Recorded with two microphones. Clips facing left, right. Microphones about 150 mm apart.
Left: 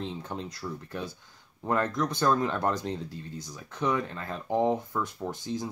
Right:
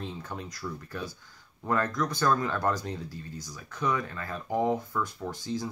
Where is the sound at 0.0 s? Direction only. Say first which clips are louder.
Left 2 dB; 20° left (ahead or behind).